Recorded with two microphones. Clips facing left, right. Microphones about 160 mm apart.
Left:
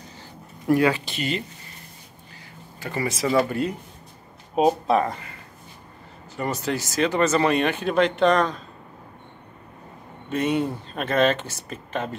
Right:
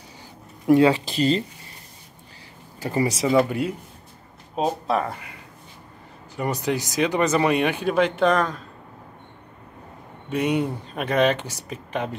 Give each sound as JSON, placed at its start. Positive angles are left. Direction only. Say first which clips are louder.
{"t": 0.7, "sound": "speech", "louder": "right 4 dB", "side_deg": -25}
{"t": 2.9, "sound": "speech", "louder": "right 4 dB", "side_deg": -25}
{"t": 3.4, "sound": "speech", "louder": "even", "side_deg": -10}
{"t": 4.8, "sound": "speech", "louder": "left 3 dB", "side_deg": 0}
{"t": 10.3, "sound": "speech", "louder": "even", "side_deg": -10}